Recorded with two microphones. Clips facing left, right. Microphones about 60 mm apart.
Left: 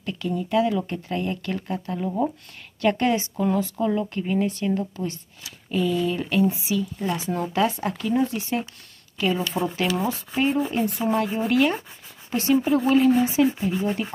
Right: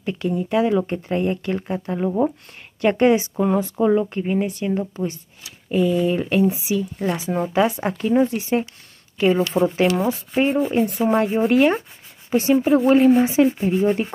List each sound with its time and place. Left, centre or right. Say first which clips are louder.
0.0 s speech: right 4 dB; right
7.8 s speech: right 5 dB; right